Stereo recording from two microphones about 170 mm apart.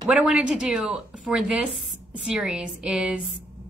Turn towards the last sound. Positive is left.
turn(degrees=-5)  # may be behind; listen again after turning